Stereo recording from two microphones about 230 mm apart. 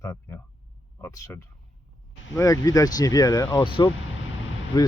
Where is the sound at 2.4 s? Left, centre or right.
Centre.